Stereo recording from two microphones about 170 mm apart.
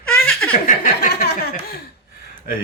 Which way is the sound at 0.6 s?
60° left (ahead or behind).